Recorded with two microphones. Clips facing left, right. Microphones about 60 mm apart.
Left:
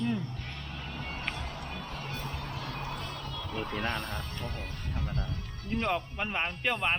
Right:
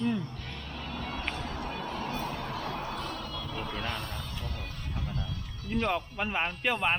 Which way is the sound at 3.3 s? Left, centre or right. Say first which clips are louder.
Left 1 dB; left.